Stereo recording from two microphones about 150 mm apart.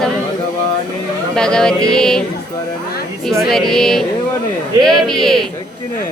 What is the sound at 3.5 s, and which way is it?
A capella, centre (ahead or behind).